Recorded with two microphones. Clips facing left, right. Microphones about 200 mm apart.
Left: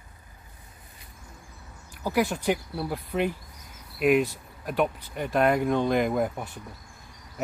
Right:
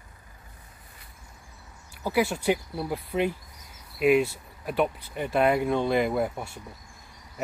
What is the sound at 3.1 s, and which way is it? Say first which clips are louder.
Speech: right 1 dB; centre (ahead or behind).